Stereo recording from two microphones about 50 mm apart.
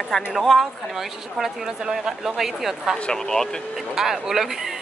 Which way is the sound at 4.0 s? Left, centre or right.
Centre.